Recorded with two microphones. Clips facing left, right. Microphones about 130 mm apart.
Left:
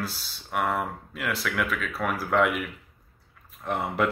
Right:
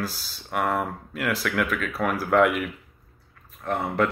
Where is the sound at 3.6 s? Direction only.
10° left (ahead or behind).